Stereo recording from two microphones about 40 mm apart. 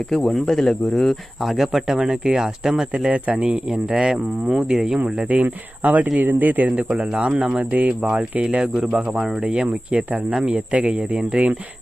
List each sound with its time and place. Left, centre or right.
0.1 s speech: centre
3.1 s speech: right; by 4.9 s centre
5.0 s speech: right
5.4 s speech: right
6.7 s speech: right
8.4 s speech: right
9.4 s speech: right